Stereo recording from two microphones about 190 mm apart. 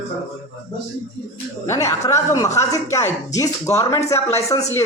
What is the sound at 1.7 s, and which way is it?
Speech, 15° left (ahead or behind).